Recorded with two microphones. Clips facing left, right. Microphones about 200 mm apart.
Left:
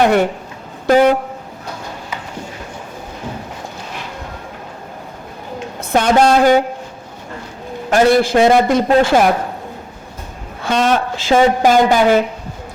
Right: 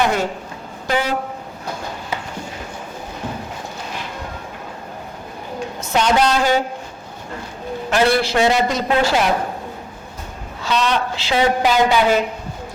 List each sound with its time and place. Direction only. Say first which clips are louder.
0.0 s speech: left 6 dB; 60° left (ahead or behind)
0.9 s speech: left 10 dB; 50° left (ahead or behind)
5.8 s a woman's voice: left 4 dB; 55° left (ahead or behind)
7.9 s a woman's voice: left 5 dB; 45° left (ahead or behind)
10.6 s a woman's voice: left 4 dB; 50° left (ahead or behind)